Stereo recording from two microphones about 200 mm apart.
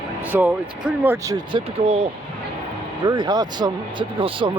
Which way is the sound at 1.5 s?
30° right (ahead or behind).